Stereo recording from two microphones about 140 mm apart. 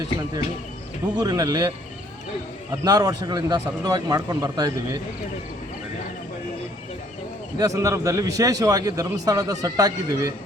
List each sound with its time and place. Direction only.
1.1 s speech: 25° right (ahead or behind)
2.8 s speech: 30° right (ahead or behind)
7.6 s speech: 20° right (ahead or behind)